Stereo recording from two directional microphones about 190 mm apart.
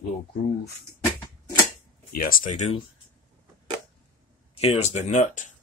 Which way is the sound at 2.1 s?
50° left (ahead or behind).